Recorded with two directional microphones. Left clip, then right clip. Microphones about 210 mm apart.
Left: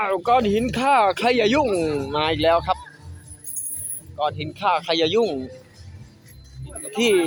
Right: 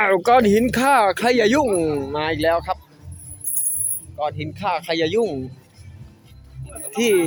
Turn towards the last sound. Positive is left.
turn(degrees=0)  # may be behind; listen again after turning